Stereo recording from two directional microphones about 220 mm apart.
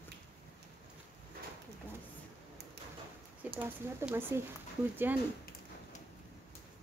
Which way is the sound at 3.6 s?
10° right (ahead or behind).